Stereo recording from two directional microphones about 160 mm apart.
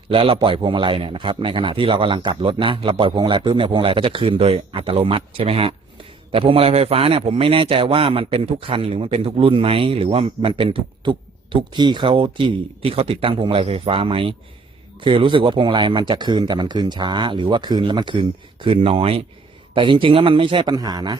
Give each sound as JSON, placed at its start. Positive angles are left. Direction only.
{"t": 0.1, "sound": "a man's voice", "side_deg": -35}